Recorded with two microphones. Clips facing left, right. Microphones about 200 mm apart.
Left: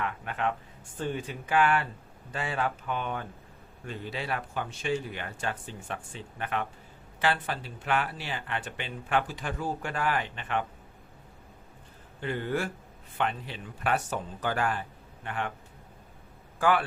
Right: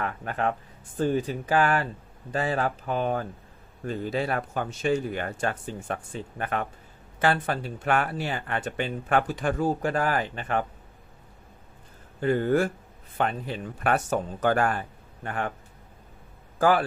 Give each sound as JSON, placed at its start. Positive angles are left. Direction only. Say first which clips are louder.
{"t": 0.0, "sound": "speech", "louder": "right 3 dB", "side_deg": -40}
{"t": 12.2, "sound": "speech", "louder": "right 8 dB", "side_deg": -45}
{"t": 16.6, "sound": "a man's voice", "louder": "right 4 dB", "side_deg": -40}